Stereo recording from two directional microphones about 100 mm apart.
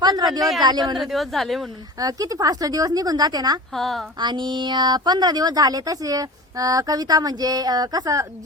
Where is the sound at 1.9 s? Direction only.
40° right (ahead or behind).